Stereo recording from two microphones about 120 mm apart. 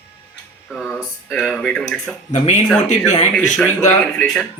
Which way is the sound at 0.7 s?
5° left (ahead or behind).